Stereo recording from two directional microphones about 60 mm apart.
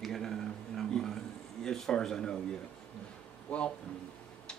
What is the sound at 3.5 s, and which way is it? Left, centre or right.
Speech, centre.